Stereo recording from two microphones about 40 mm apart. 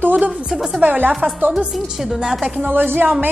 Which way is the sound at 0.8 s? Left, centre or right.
Right.